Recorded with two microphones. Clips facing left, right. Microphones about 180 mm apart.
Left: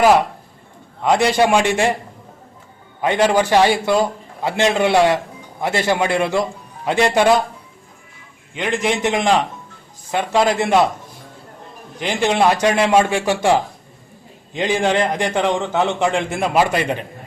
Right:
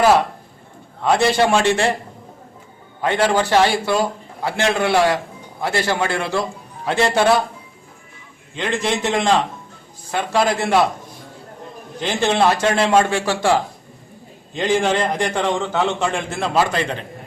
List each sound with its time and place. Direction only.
1.0 s a man's voice: 15° left (ahead or behind)
3.0 s a man's voice: 15° left (ahead or behind)
8.5 s a man's voice: 15° left (ahead or behind)
11.9 s a man's voice: 15° left (ahead or behind)